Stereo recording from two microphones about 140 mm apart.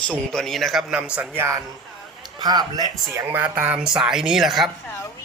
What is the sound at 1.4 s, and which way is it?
A man's voice, 20° right (ahead or behind).